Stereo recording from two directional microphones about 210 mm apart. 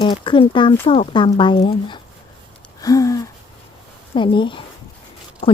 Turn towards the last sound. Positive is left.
turn(degrees=25)  # may be behind; listen again after turning